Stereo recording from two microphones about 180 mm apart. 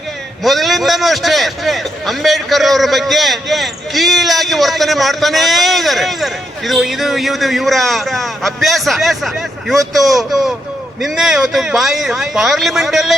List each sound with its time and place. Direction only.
0.4 s a man's voice: centre (ahead or behind)